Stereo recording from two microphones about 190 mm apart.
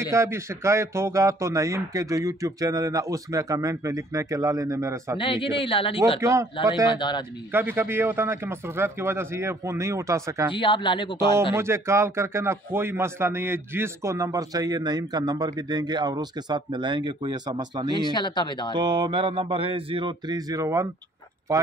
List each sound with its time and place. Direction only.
0.0 s speech: 15° right (ahead or behind)
5.2 s a man's voice: 25° left (ahead or behind)
7.5 s speech: 10° right (ahead or behind)
10.5 s a man's voice: 25° left (ahead or behind)
11.5 s speech: 15° right (ahead or behind)
18.0 s a man's voice: 25° left (ahead or behind)
18.7 s speech: 25° right (ahead or behind)